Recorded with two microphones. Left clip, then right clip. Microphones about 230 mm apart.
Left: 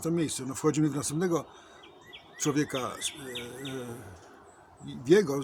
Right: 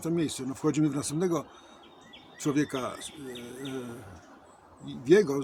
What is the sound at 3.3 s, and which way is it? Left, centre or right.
Bee, left.